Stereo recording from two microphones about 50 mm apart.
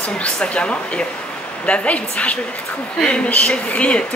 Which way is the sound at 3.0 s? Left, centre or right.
Left.